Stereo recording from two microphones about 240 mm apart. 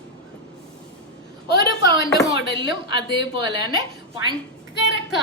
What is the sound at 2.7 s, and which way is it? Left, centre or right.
Speech, left.